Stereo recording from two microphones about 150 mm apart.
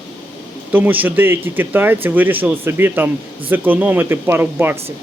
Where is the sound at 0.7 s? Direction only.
10° right (ahead or behind).